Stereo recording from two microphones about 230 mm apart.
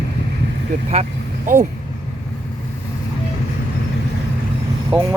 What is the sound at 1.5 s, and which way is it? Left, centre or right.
Speech, right.